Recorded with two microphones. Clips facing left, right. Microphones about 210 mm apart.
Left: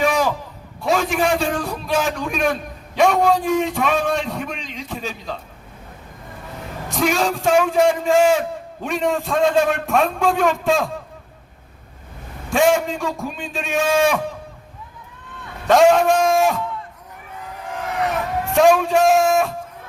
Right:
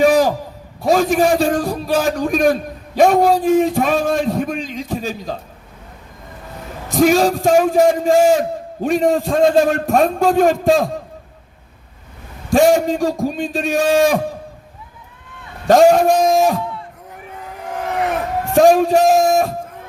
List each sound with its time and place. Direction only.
0.0 s a sound: 35° right (ahead or behind)
0.8 s a man's voice: 35° right (ahead or behind)
6.9 s a man's voice: 40° right (ahead or behind)
12.5 s a man's voice: 40° right (ahead or behind)
15.6 s a man's voice: 40° right (ahead or behind)
18.5 s a man's voice: 40° right (ahead or behind)